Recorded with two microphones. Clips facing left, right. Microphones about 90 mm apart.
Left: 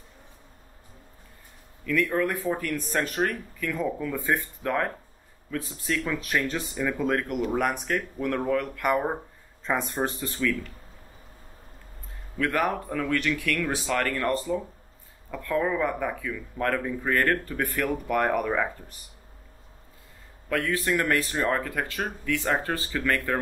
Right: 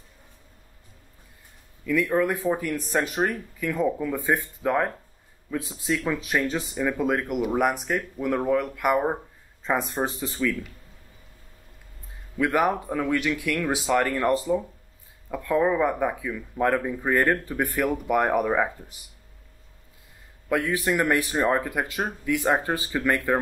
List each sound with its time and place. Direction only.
1.9 s speech: 10° right (ahead or behind)
12.4 s speech: 15° right (ahead or behind)
20.4 s speech: 15° right (ahead or behind)